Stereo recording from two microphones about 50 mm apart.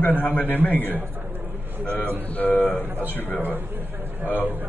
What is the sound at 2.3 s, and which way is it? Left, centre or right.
A man's voice, left.